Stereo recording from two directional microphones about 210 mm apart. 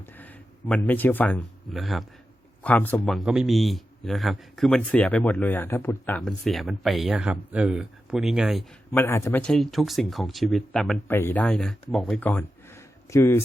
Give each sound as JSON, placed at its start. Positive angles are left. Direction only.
{"t": 0.0, "sound": "a man's voice", "side_deg": 10}
{"t": 8.9, "sound": "a man's voice", "side_deg": 10}